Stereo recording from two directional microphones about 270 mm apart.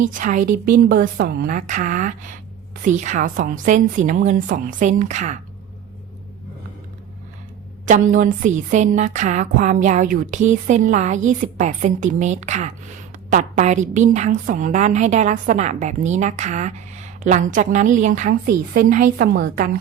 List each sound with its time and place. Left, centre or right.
0.0 s a woman's voice: right
0.5 s a woman's voice: right
0.9 s a woman's voice: right
7.9 s a woman's voice: right